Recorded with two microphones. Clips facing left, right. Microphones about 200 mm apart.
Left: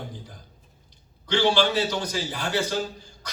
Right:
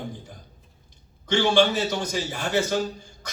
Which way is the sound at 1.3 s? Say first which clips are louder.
Right 2 dB; 50° right (ahead or behind).